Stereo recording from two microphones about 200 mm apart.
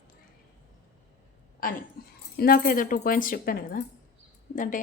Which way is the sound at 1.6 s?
45° left (ahead or behind).